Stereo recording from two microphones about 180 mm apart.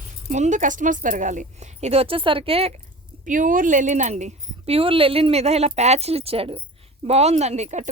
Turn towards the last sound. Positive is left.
turn(degrees=-40)  # may be behind; listen again after turning